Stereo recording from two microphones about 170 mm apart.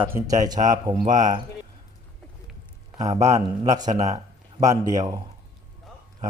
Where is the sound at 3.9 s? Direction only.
20° right (ahead or behind).